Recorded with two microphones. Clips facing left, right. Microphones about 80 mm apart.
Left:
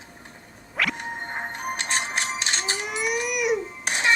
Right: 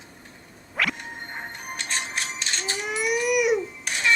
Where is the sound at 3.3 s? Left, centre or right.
Centre.